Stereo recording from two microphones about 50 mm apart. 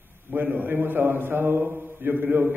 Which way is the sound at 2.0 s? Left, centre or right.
Right.